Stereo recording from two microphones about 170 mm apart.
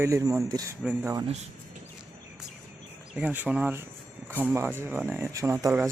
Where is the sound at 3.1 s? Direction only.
10° right (ahead or behind).